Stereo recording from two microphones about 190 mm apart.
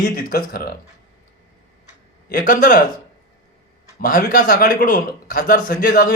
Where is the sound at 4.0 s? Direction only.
45° left (ahead or behind).